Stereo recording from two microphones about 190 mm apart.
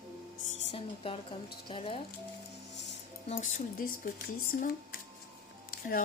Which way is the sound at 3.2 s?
40° left (ahead or behind).